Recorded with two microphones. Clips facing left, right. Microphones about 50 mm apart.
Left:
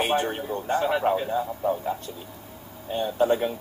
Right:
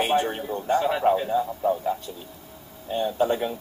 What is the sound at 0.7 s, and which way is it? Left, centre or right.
Speech, centre.